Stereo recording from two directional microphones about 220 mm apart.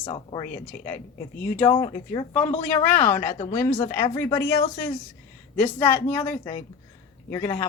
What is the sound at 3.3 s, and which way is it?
Speech, 30° left (ahead or behind).